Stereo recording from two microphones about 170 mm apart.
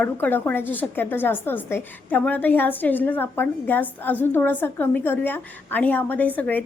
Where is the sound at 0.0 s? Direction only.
10° left (ahead or behind).